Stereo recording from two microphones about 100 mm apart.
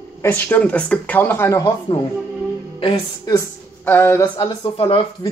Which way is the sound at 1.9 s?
55° left (ahead or behind).